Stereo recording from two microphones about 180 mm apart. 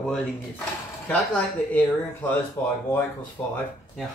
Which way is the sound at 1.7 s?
10° left (ahead or behind).